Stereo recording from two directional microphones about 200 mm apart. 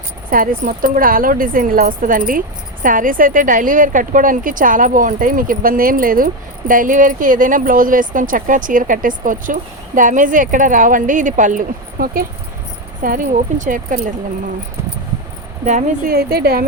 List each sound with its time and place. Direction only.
0.3 s a woman's voice: 45° right (ahead or behind)
15.6 s speech: 40° right (ahead or behind)